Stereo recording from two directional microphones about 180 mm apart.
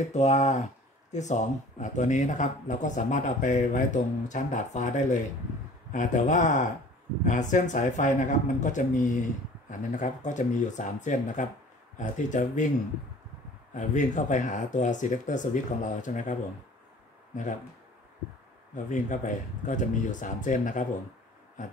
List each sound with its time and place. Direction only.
0.1 s speech: 40° left (ahead or behind)
13.7 s speech: 45° left (ahead or behind)
18.9 s speech: 45° left (ahead or behind)